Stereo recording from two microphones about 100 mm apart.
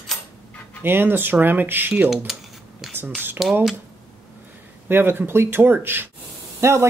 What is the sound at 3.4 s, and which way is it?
Speech, centre (ahead or behind).